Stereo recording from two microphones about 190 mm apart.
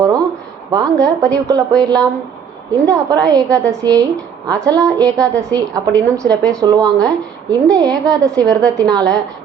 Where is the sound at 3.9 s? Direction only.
20° right (ahead or behind).